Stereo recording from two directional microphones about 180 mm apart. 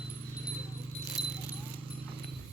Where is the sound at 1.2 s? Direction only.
5° right (ahead or behind).